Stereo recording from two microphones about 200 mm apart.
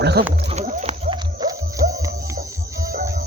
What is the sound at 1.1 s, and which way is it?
Music, 20° right (ahead or behind).